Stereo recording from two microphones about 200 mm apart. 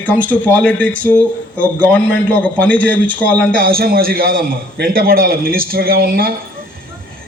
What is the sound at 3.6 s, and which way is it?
A man's voice, 45° right (ahead or behind).